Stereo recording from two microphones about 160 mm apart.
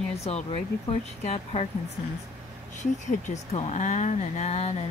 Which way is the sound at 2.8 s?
50° left (ahead or behind).